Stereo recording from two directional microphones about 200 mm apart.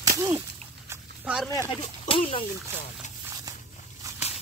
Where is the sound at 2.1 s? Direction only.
25° left (ahead or behind).